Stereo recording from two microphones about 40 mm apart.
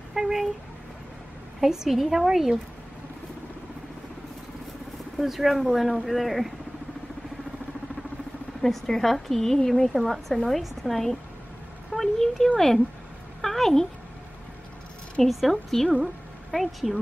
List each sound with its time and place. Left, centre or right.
0.1 s speech: centre
1.6 s a woman's voice: centre
5.2 s a woman's voice: centre
8.5 s a woman's voice: centre
15.2 s a woman's voice: centre